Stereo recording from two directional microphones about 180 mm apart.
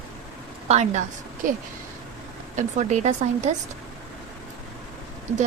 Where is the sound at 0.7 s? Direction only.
40° right (ahead or behind).